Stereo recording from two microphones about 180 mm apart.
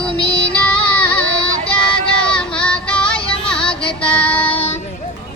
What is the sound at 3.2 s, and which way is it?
Music, 30° left (ahead or behind).